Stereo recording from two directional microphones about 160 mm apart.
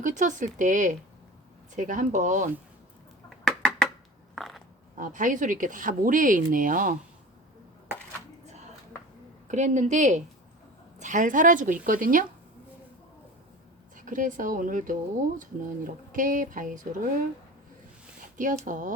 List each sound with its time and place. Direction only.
0.0 s speech: 50° right (ahead or behind)
3.2 s a sound: centre (ahead or behind)
4.9 s speech: 55° right (ahead or behind)
9.5 s speech: 50° right (ahead or behind)
13.9 s speech: 55° right (ahead or behind)
18.2 s speech: 55° right (ahead or behind)